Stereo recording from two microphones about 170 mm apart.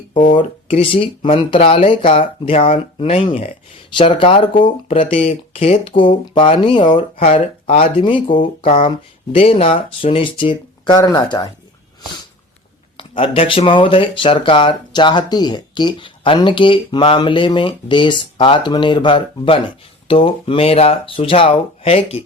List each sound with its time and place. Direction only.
0.3 s speech: 30° left (ahead or behind)
7.2 s speech: 45° left (ahead or behind)
8.0 s speech: 30° left (ahead or behind)
13.0 s speech: 30° left (ahead or behind)